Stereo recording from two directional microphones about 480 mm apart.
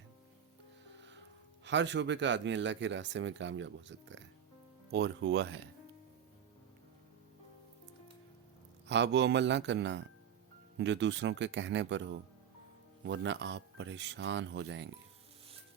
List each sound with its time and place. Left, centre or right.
1.6 s speech: right
8.9 s speech: right